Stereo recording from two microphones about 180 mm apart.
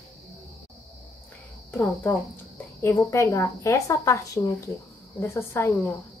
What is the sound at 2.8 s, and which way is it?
A woman's voice, 15° left (ahead or behind).